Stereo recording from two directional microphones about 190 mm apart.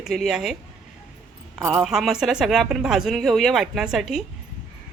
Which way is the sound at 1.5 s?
5° right (ahead or behind).